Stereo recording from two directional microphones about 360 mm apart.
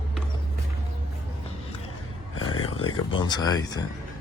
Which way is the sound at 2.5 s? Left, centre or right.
Centre.